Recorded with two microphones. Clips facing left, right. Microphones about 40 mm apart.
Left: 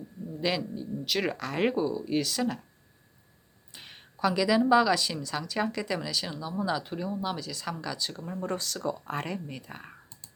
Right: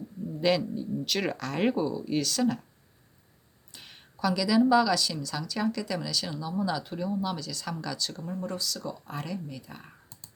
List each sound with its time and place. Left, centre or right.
0.4 s speech: centre
3.7 s speech: left
8.4 s speech: left